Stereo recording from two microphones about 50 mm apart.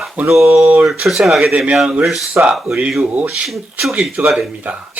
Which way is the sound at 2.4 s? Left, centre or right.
Right.